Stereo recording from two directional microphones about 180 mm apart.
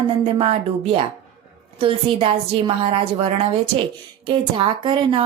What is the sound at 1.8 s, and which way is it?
A woman's voice, 30° right (ahead or behind).